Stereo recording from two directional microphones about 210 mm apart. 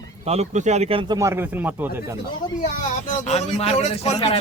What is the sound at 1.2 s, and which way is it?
Speech, 10° right (ahead or behind).